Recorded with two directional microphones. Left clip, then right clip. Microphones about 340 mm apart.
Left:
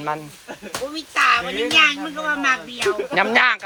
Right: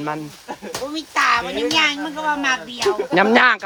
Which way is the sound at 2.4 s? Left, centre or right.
Right.